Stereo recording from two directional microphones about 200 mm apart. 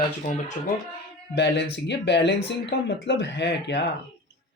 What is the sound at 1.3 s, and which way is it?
Speech, 60° left (ahead or behind).